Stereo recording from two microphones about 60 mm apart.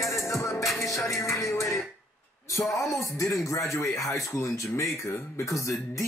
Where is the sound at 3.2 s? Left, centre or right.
Left.